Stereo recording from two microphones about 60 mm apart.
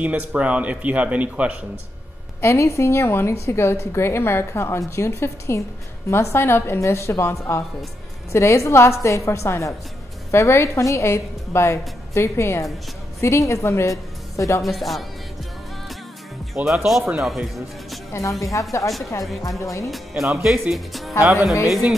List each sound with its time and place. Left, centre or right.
0.0 s speech: right
2.4 s a woman's voice: left
14.6 s speech: centre
16.6 s speech: centre
18.1 s a woman's voice: left
18.9 s speech: centre
19.6 s a woman's voice: left
19.9 s speech: centre